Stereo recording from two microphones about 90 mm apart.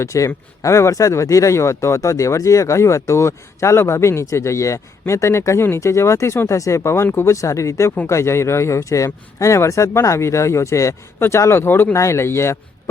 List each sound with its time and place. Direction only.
0.0 s speech: 35° left (ahead or behind)